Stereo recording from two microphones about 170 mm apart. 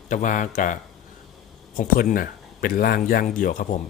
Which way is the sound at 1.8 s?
55° left (ahead or behind).